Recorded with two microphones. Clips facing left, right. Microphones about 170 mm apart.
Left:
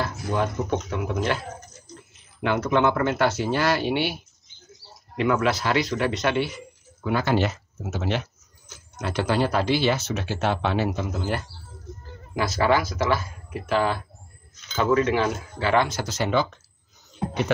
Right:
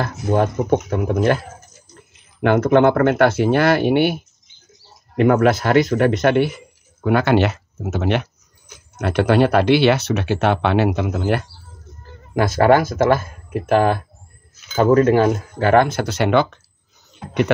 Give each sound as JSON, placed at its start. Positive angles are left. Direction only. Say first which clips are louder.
{"t": 0.0, "sound": "speech", "louder": "right 7 dB", "side_deg": -45}
{"t": 2.4, "sound": "a man's voice", "louder": "right 8 dB", "side_deg": -55}
{"t": 12.4, "sound": "speech", "louder": "right 8 dB", "side_deg": -55}
{"t": 17.2, "sound": "beatboxing", "louder": "left 7 dB", "side_deg": 30}